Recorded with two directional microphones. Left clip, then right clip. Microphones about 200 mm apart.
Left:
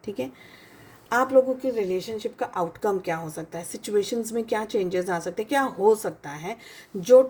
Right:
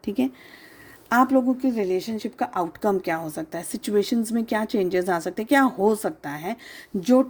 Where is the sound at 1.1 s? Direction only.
55° right (ahead or behind).